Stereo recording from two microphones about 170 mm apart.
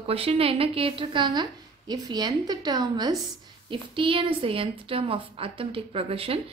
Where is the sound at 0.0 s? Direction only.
35° right (ahead or behind).